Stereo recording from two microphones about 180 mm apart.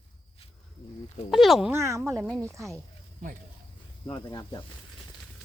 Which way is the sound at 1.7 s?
15° right (ahead or behind).